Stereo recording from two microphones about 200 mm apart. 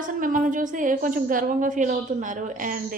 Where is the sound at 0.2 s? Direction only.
40° right (ahead or behind).